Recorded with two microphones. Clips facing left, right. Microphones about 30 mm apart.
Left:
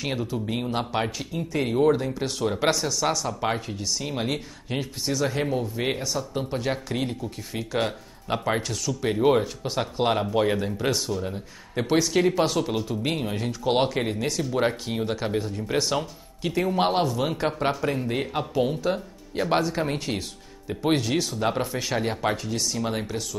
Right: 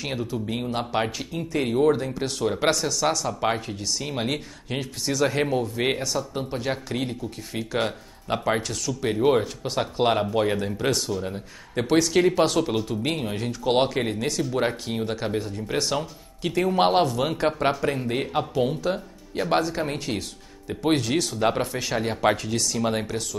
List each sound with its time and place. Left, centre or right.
0.0 s speech: centre
0.9 s speech: centre
4.7 s speech: centre
5.2 s speech: centre
16.7 s speech: centre
21.7 s speech: centre
22.2 s speech: centre